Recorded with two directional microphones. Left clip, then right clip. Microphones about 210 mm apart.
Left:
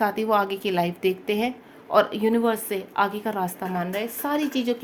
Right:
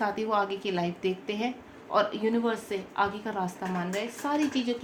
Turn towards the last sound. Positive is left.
turn(degrees=55)  # may be behind; listen again after turning